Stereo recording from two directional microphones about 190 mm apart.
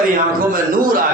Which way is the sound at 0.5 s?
45° right (ahead or behind).